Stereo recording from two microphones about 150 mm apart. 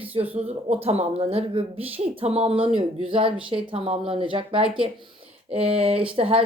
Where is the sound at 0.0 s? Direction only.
40° right (ahead or behind).